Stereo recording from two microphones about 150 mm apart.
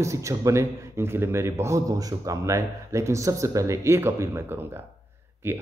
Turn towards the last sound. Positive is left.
turn(degrees=-15)  # may be behind; listen again after turning